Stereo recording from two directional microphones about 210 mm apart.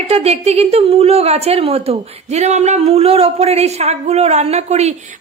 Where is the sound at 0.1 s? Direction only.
30° right (ahead or behind).